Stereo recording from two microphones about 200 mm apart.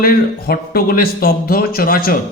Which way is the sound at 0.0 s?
50° left (ahead or behind).